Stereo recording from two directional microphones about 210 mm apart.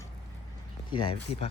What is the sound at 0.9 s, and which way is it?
Speech, 25° left (ahead or behind).